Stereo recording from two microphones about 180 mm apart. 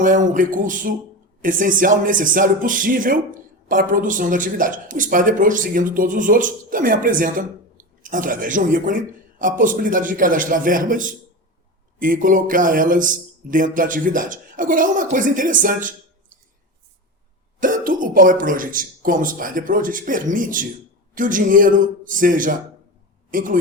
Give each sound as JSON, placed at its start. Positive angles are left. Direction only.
{"t": 0.0, "sound": "speech", "side_deg": -45}
{"t": 17.6, "sound": "speech", "side_deg": -50}